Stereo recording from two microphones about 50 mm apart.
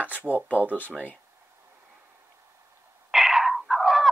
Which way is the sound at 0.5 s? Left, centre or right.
Right.